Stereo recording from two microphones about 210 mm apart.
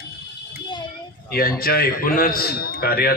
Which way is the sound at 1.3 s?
45° left (ahead or behind).